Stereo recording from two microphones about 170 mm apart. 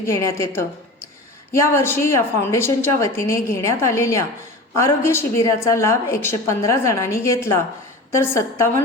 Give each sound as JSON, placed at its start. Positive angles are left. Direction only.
{"t": 0.0, "sound": "a woman's voice", "side_deg": 15}